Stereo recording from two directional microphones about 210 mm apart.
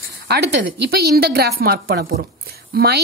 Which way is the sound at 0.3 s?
50° right (ahead or behind).